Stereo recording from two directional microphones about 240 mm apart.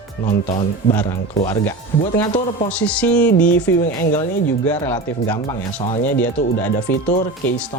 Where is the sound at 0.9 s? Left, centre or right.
Centre.